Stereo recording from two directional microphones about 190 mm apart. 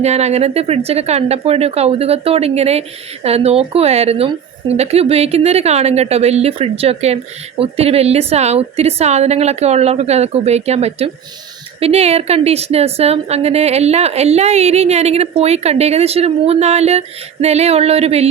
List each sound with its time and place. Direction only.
0.0 s a woman's voice: 35° right (ahead or behind)